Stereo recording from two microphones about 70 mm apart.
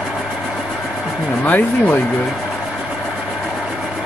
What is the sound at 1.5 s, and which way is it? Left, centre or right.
Speech, left.